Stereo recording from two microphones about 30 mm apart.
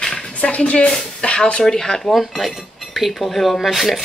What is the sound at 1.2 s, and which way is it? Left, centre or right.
Speech, left.